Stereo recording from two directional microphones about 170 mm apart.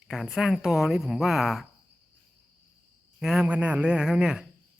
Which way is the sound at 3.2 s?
5° right (ahead or behind).